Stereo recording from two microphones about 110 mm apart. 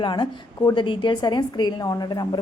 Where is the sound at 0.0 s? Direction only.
45° left (ahead or behind).